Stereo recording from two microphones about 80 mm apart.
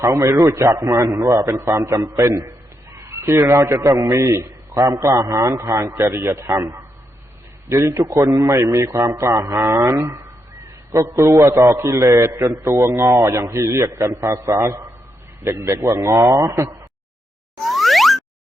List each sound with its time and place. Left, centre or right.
0.0 s a man's voice: right
17.7 s boing: centre